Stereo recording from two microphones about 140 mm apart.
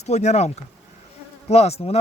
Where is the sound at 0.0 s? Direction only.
55° left (ahead or behind).